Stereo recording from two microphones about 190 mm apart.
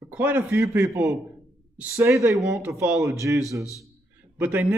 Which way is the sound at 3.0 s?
15° right (ahead or behind).